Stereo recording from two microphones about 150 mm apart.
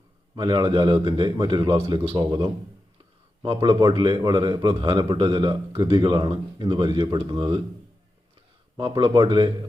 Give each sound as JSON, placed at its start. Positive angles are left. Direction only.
{"t": 0.3, "sound": "a man's voice", "side_deg": -30}
{"t": 8.8, "sound": "a man's voice", "side_deg": -35}